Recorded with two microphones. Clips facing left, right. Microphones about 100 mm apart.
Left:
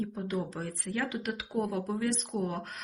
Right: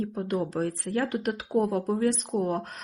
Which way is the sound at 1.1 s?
40° right (ahead or behind).